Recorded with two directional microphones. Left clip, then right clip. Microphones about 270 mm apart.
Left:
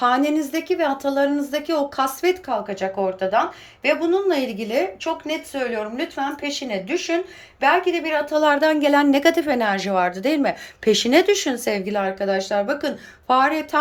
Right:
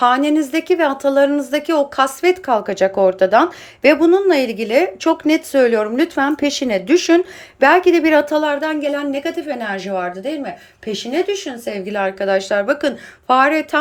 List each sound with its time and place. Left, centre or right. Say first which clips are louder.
0.0 s a woman's voice: right 5 dB; centre